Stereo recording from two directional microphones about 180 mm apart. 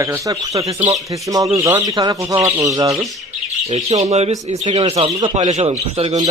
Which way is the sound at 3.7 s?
40° right (ahead or behind).